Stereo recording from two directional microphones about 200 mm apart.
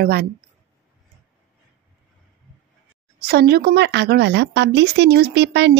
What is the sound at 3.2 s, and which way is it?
A woman's voice, 50° right (ahead or behind).